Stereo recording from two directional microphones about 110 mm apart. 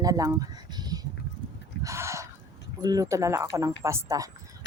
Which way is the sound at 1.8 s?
25° right (ahead or behind).